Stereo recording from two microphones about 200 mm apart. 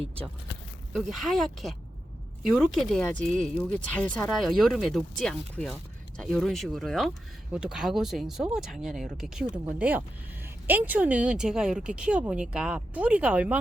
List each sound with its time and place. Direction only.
0.9 s speech: centre (ahead or behind)